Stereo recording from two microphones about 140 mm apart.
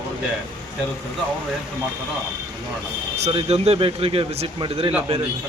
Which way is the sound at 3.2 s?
45° right (ahead or behind).